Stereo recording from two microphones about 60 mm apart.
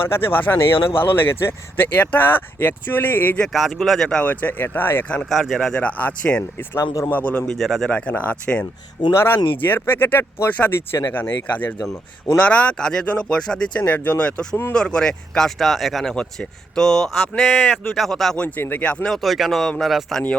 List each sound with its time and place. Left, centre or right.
0.1 s speech: left
3.5 s speech: centre
4.2 s speech: left
5.2 s speech: centre
5.7 s speech: left
7.5 s speech: centre
7.9 s speech: left
9.1 s speech: left
11.1 s speech: left; by 13.8 s centre
13.8 s speech: left
14.7 s speech: centre
16.1 s speech: centre
18.3 s speech: left
19.1 s speech: centre